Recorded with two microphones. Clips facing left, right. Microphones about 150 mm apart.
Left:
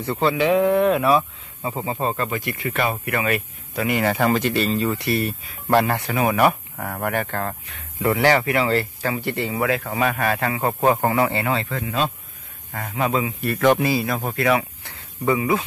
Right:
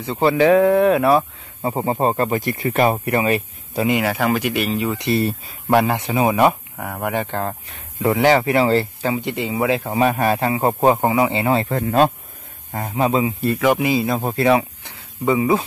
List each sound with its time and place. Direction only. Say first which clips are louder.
0.2 s speech: right 5 dB; 40° right (ahead or behind)
4.0 s speech: even; 5° right (ahead or behind)
11.5 s speech: right 7 dB; 40° right (ahead or behind)
12.7 s speech: right 4 dB; 30° right (ahead or behind)
13.6 s speech: left 1 dB; 10° right (ahead or behind)